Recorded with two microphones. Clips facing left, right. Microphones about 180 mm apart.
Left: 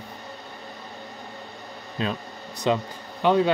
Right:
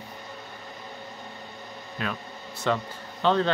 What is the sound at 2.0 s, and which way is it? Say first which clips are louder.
A man's voice: left 4 dB; 25° left (ahead or behind).